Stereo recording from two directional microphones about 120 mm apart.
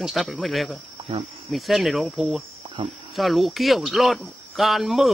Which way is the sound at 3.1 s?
Centre (ahead or behind).